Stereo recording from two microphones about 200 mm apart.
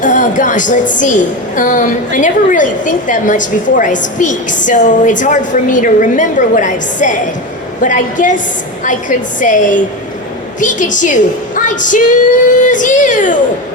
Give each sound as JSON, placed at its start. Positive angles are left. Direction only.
{"t": 0.0, "sound": "a woman's voice", "side_deg": 40}